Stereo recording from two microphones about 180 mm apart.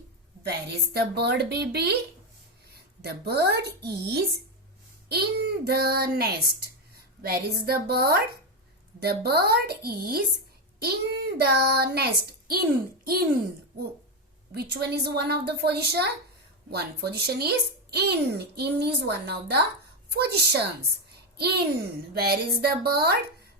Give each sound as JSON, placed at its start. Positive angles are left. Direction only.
{"t": 0.9, "sound": "a child's voice", "side_deg": -65}
{"t": 14.5, "sound": "a child's voice", "side_deg": -65}